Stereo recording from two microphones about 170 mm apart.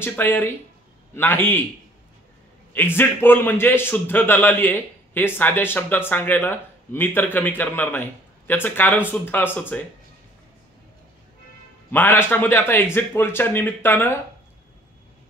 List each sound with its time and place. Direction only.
0.0 s a man's voice: 10° left (ahead or behind)
2.7 s a man's voice: 10° left (ahead or behind)
11.9 s a man's voice: 10° left (ahead or behind)